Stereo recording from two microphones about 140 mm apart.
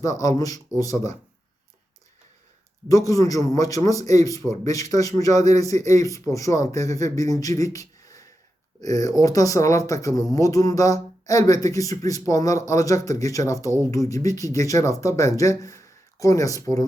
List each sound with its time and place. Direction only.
0.2 s speech: 25° left (ahead or behind)
2.9 s speech: 25° left (ahead or behind)